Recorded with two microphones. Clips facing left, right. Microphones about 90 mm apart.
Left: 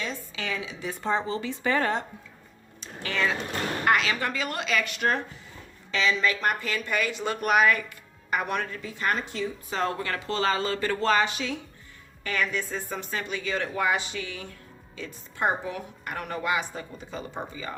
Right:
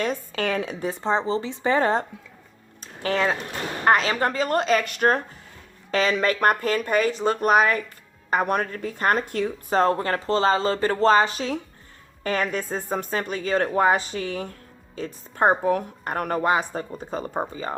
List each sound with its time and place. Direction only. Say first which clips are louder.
0.0 s a woman's voice: right 8 dB; 55° right (ahead or behind)
0.9 s speech: right 3 dB; 30° right (ahead or behind)
2.8 s a sound: right 5 dB; 40° right (ahead or behind)
3.8 s a woman's voice: right 6 dB; 40° right (ahead or behind)